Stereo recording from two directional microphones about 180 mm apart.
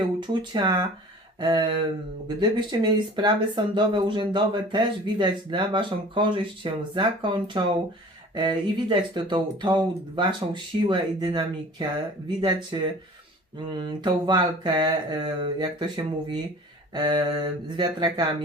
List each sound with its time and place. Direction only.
0.2 s speech: 25° right (ahead or behind)